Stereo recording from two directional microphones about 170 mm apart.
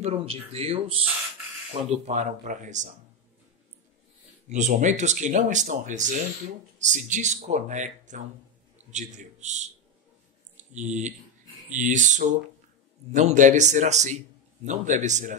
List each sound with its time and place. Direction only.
0.0 s speech: 35° right (ahead or behind)
4.5 s speech: 45° right (ahead or behind)